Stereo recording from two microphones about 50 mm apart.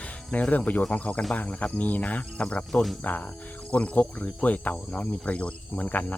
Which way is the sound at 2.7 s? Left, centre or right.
Centre.